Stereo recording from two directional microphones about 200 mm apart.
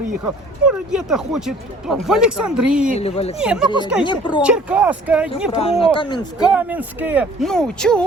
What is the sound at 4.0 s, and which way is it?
Speech, 25° left (ahead or behind).